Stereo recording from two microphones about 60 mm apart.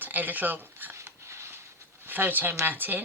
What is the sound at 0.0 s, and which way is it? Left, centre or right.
Speech, right.